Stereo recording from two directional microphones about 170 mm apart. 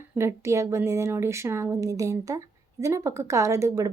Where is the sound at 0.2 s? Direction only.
15° right (ahead or behind).